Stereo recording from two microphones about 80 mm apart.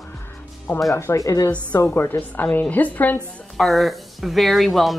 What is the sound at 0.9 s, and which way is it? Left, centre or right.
Speech, left.